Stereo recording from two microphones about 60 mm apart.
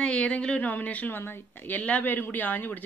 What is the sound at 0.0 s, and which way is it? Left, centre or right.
A woman's voice, centre.